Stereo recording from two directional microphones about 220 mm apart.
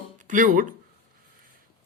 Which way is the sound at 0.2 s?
35° right (ahead or behind).